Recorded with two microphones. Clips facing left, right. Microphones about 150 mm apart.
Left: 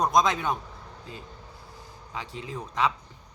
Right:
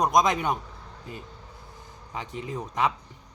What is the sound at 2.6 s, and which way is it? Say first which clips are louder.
Speech: even; 15° right (ahead or behind).